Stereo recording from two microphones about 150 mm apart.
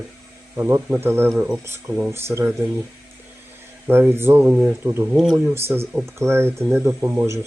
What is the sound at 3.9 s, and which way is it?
Speech, 15° right (ahead or behind).